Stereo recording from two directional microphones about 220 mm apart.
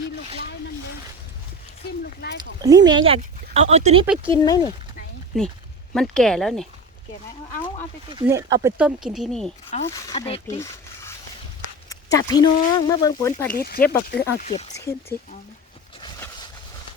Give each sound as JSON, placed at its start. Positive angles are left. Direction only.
{"t": 2.4, "sound": "speech", "side_deg": -15}
{"t": 4.4, "sound": "speech", "side_deg": 20}
{"t": 5.3, "sound": "speech", "side_deg": 0}
{"t": 8.1, "sound": "speech", "side_deg": -15}
{"t": 8.8, "sound": "speech", "side_deg": 0}
{"t": 9.7, "sound": "speech", "side_deg": 30}
{"t": 11.9, "sound": "a sound", "side_deg": 15}
{"t": 12.5, "sound": "speech", "side_deg": 40}
{"t": 12.7, "sound": "speech", "side_deg": 15}
{"t": 13.5, "sound": "speech", "side_deg": 45}
{"t": 14.4, "sound": "speech", "side_deg": 30}
{"t": 16.0, "sound": "a sound", "side_deg": 20}